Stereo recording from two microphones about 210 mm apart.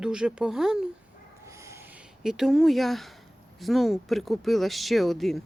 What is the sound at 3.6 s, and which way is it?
Speech, centre (ahead or behind).